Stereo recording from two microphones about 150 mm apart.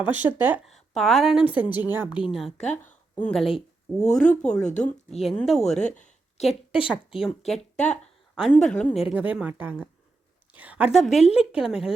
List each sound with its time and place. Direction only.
0.1 s a woman's voice: 10° right (ahead or behind)
0.6 s a woman's voice: centre (ahead or behind)
2.2 s a woman's voice: centre (ahead or behind)
6.0 s a sound: 55° left (ahead or behind)
6.5 s a woman's voice: 40° left (ahead or behind)
6.8 s a woman's voice: 5° right (ahead or behind)